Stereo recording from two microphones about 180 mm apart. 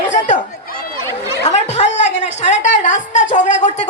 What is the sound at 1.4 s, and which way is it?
A woman's voice, 40° left (ahead or behind).